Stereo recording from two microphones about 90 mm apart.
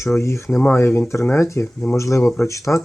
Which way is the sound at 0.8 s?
30° left (ahead or behind).